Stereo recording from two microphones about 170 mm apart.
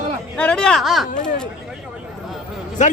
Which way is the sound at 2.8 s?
45° left (ahead or behind).